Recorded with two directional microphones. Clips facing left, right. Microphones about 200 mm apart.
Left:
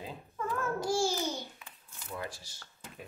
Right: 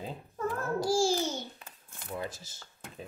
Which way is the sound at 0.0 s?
35° right (ahead or behind).